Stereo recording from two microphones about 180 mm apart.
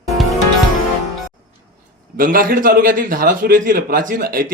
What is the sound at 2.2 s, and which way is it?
A man's voice, 50° right (ahead or behind).